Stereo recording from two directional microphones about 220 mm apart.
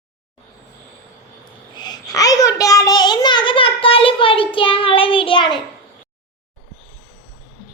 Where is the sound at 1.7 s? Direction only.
20° left (ahead or behind).